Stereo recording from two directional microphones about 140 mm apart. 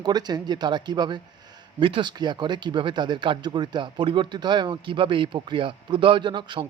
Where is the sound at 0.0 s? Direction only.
30° right (ahead or behind).